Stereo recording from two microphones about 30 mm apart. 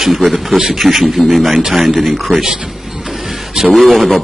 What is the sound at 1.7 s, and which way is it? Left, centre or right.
Speech, centre.